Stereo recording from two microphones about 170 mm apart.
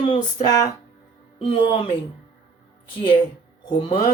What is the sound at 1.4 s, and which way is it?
Speech, 35° left (ahead or behind).